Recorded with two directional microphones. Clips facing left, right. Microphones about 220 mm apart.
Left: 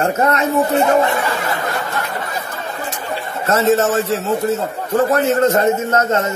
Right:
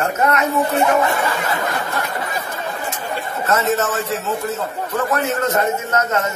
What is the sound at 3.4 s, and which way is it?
A man's voice, 30° left (ahead or behind).